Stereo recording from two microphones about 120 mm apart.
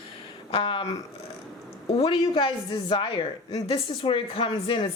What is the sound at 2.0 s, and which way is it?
A woman's voice, 45° left (ahead or behind).